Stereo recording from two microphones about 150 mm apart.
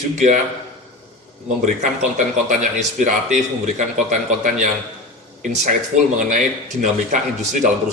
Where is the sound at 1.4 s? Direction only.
50° right (ahead or behind).